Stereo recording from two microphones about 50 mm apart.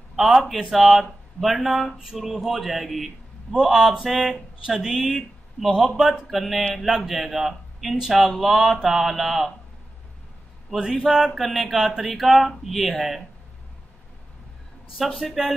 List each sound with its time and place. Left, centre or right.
0.1 s speech: centre
10.8 s speech: centre
11.3 s speech: centre
15.0 s speech: centre